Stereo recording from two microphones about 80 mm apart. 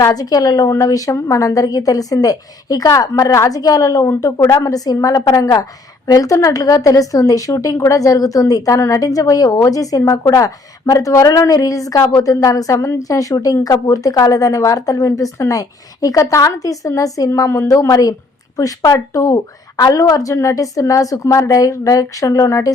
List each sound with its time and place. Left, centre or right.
0.0 s speech: left